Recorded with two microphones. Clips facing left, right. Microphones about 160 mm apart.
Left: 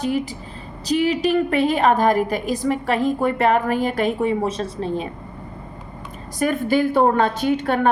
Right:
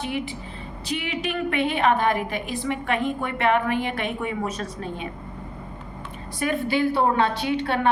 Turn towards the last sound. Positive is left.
turn(degrees=45)  # may be behind; listen again after turning